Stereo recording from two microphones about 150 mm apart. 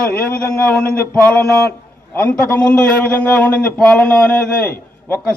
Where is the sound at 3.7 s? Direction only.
5° left (ahead or behind).